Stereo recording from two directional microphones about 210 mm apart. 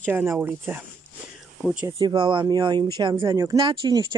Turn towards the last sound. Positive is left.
turn(degrees=-25)  # may be behind; listen again after turning